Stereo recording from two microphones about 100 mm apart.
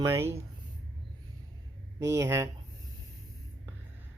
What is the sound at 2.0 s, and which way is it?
Speech, 30° right (ahead or behind).